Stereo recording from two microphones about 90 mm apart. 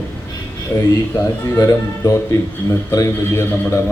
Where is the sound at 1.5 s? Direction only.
35° left (ahead or behind).